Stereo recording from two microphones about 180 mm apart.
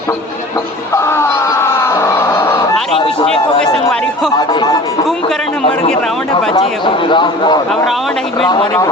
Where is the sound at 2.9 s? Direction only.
30° left (ahead or behind).